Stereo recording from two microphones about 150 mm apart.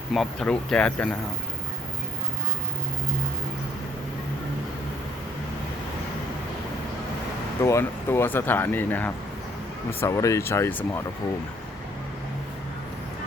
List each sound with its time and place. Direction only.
0.1 s speech: centre (ahead or behind)
7.6 s speech: 15° left (ahead or behind)